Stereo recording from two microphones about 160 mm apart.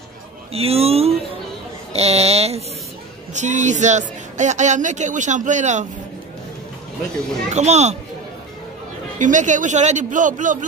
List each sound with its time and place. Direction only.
0.5 s a man's voice: 40° right (ahead or behind)
7.5 s a man's voice: 45° right (ahead or behind)
9.2 s a man's voice: 50° right (ahead or behind)